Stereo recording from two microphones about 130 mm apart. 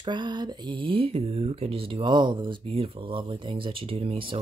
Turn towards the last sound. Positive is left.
turn(degrees=-40)  # may be behind; listen again after turning